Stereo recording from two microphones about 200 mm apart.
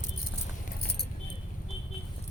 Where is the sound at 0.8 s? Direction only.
55° left (ahead or behind).